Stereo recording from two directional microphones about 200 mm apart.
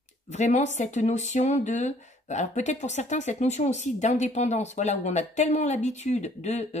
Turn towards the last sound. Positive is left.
turn(degrees=35)  # may be behind; listen again after turning